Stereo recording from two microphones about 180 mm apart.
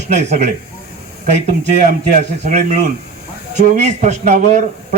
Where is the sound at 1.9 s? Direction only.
40° right (ahead or behind).